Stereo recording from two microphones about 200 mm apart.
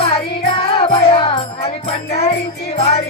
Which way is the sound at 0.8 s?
30° left (ahead or behind).